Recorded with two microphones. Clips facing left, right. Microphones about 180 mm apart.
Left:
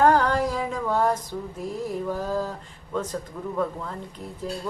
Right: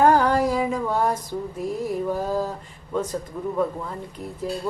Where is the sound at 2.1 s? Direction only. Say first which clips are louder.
Right 2 dB; 10° right (ahead or behind).